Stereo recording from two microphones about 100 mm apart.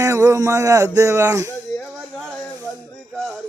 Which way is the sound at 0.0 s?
30° right (ahead or behind).